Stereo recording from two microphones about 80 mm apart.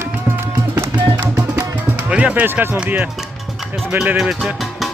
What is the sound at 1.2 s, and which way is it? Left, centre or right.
Music, centre.